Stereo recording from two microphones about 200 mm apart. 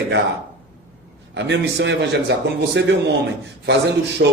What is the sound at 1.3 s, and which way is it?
A man's voice, 60° right (ahead or behind).